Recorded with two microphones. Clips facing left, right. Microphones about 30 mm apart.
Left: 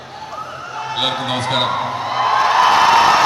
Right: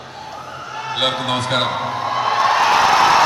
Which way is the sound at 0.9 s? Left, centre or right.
Centre.